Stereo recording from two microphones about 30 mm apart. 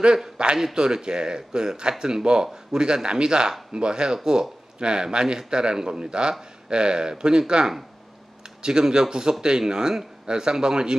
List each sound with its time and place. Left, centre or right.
0.0 s a man's voice: right